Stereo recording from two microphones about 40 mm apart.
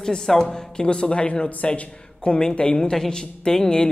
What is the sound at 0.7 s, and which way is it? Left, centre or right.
Speech, left.